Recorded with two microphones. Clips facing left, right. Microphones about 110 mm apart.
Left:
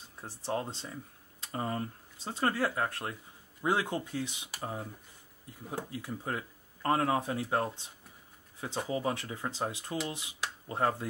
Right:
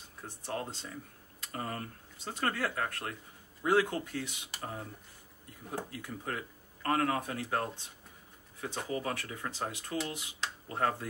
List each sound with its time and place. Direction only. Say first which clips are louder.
0.5 s speech: left 4 dB; 25° left (ahead or behind)
4.5 s speech: left 2 dB; 10° left (ahead or behind)
10.4 s a sound: left 2 dB; 20° left (ahead or behind)